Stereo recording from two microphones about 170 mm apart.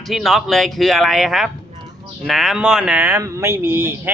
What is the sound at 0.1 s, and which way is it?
Speech, centre (ahead or behind).